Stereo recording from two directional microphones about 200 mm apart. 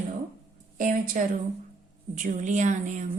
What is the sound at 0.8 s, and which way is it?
A woman's voice, 40° right (ahead or behind).